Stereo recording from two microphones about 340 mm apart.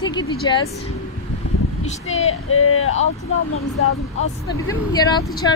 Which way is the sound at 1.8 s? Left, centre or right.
Centre.